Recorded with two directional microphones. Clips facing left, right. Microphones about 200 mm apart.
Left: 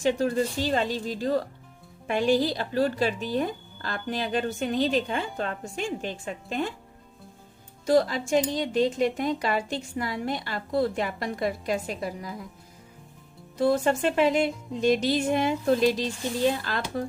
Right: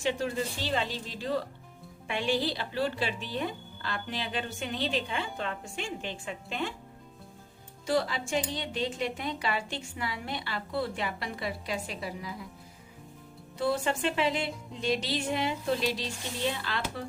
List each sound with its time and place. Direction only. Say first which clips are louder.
0.0 s speech: left 6 dB; 45° left (ahead or behind)
7.9 s speech: left 7 dB; 45° left (ahead or behind)
13.6 s speech: left 6 dB; 40° left (ahead or behind)